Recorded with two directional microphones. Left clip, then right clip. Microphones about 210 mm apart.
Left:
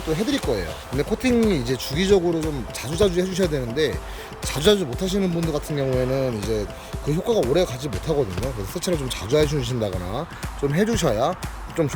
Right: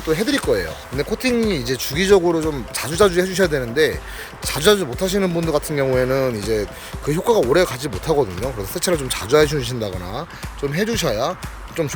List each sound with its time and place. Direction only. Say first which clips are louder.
0.1 s speech: right 5 dB; centre (ahead or behind)
1.1 s speech: right 1 dB; 15° left (ahead or behind)